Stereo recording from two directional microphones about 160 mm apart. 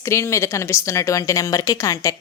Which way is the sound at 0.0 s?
20° left (ahead or behind).